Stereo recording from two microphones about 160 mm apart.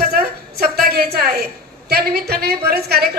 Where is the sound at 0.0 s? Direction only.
70° right (ahead or behind).